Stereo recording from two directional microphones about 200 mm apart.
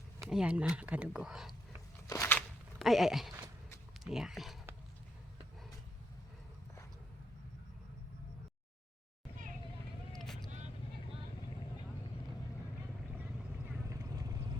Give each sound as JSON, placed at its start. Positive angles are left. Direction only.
{"t": 0.2, "sound": "speech", "side_deg": -5}
{"t": 2.0, "sound": "a sound", "side_deg": 15}
{"t": 2.8, "sound": "speech", "side_deg": 0}
{"t": 10.1, "sound": "vehicle", "side_deg": 0}
{"t": 13.9, "sound": "vehicle", "side_deg": -15}